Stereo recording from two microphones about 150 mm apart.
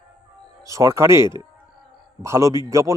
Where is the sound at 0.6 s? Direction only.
20° right (ahead or behind).